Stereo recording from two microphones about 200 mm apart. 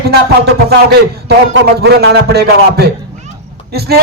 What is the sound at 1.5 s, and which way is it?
Speech, 55° right (ahead or behind).